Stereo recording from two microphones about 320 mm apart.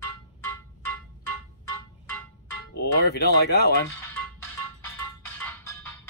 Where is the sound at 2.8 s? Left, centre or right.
Left.